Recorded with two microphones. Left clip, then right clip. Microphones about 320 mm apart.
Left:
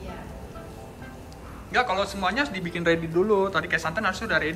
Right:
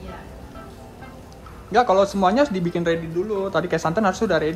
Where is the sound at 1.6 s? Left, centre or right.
Centre.